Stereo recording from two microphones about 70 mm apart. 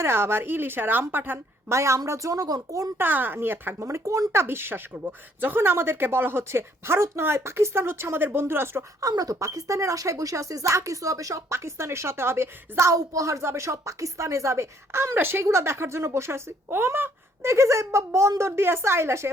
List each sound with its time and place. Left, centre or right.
0.0 s speech: right
1.7 s speech: right
3.0 s speech: right
3.8 s speech: right
9.0 s speech: right